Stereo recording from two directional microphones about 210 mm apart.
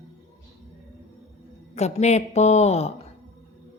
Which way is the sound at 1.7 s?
30° left (ahead or behind).